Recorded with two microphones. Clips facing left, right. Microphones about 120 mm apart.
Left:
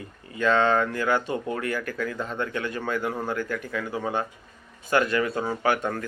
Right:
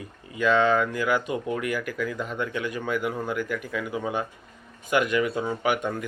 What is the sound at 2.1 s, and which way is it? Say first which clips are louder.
Speech: even; 30° left (ahead or behind).